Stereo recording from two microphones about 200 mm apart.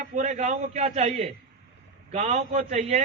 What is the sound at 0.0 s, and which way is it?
A man's voice, 35° right (ahead or behind).